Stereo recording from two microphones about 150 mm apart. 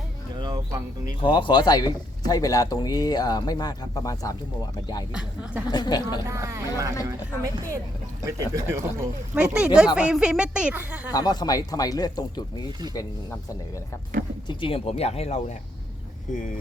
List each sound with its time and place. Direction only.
0.3 s music: 25° right (ahead or behind)
1.2 s speech: 35° left (ahead or behind)
5.1 s speech: 10° right (ahead or behind)
5.7 s speech: 30° left (ahead or behind)
6.2 s speech: 20° right (ahead or behind)
9.3 s speech: 5° right (ahead or behind)
11.1 s speech: 30° left (ahead or behind)
14.4 s speech: 35° left (ahead or behind)